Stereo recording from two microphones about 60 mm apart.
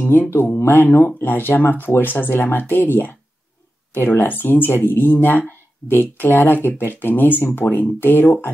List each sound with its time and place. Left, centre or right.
0.0 s speech: left